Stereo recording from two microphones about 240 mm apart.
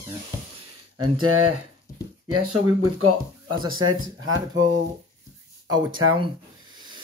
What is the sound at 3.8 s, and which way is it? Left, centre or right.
Speech, right.